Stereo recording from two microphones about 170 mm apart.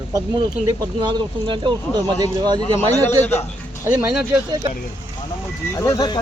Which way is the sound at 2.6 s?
10° left (ahead or behind).